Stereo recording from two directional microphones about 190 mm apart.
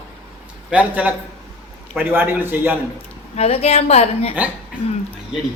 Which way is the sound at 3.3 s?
30° left (ahead or behind).